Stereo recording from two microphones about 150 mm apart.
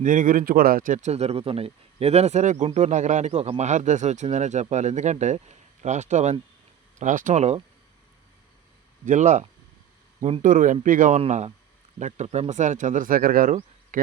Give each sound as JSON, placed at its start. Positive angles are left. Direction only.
{"t": 0.0, "sound": "speech", "side_deg": -60}
{"t": 9.0, "sound": "speech", "side_deg": -55}
{"t": 10.5, "sound": "speech", "side_deg": -60}
{"t": 11.2, "sound": "speech", "side_deg": -45}